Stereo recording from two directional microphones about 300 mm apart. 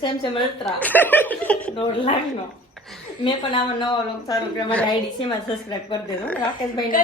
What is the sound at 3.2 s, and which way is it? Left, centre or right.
Speech, centre.